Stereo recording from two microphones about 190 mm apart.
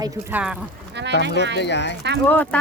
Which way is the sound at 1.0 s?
65° right (ahead or behind).